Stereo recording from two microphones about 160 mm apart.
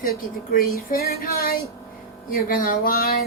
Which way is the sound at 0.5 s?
70° left (ahead or behind).